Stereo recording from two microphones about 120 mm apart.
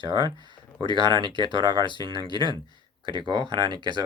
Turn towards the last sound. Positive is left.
turn(degrees=-40)  # may be behind; listen again after turning